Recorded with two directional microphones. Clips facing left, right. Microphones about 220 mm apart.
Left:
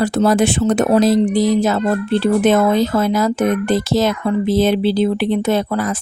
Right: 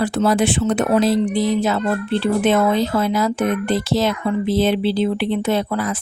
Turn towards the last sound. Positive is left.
turn(degrees=45)  # may be behind; listen again after turning